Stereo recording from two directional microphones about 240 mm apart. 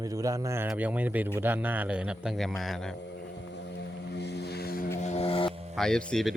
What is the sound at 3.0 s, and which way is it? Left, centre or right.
Vehicle, left.